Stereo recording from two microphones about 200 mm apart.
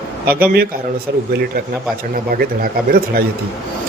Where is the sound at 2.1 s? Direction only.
45° right (ahead or behind).